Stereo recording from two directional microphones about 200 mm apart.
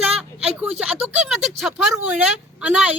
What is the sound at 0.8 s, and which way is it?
Speech, centre (ahead or behind).